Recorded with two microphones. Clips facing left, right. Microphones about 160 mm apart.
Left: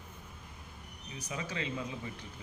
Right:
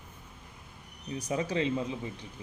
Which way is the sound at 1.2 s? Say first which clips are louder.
Right 9 dB; 35° right (ahead or behind).